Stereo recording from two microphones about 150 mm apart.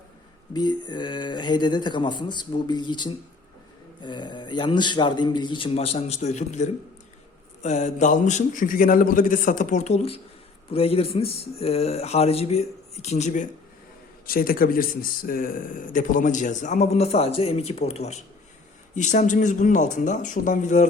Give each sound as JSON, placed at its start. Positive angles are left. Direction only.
{"t": 0.5, "sound": "speech", "side_deg": 30}
{"t": 14.3, "sound": "speech", "side_deg": 75}